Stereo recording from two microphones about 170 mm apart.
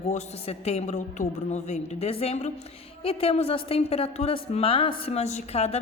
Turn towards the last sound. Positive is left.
turn(degrees=40)  # may be behind; listen again after turning